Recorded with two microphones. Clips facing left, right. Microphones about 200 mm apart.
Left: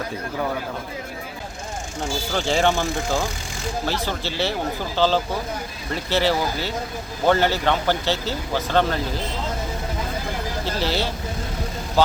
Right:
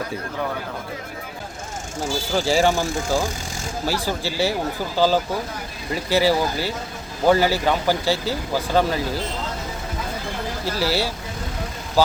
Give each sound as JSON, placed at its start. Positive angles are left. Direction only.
{"t": 2.0, "sound": "speech", "side_deg": -5}
{"t": 10.8, "sound": "speech", "side_deg": -10}